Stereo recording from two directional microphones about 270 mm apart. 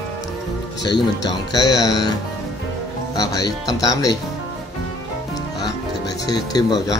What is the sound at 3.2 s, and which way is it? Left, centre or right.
Speech, centre.